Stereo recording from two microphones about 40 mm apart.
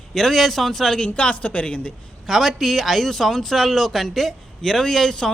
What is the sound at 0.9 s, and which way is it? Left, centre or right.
Speech, left.